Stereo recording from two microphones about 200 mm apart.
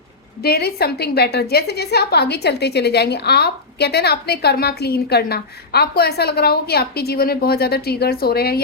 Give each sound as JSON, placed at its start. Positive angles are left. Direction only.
{"t": 0.4, "sound": "a woman's voice", "side_deg": 50}